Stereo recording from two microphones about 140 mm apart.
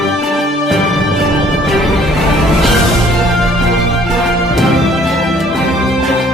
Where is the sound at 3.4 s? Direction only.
Centre (ahead or behind).